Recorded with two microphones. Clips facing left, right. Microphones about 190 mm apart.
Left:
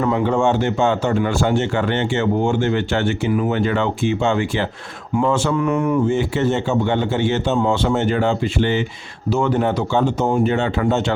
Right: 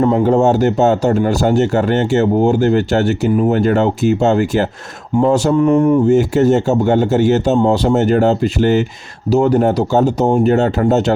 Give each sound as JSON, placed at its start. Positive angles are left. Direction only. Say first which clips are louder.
{"t": 0.0, "sound": "speech", "louder": "right 6 dB", "side_deg": -40}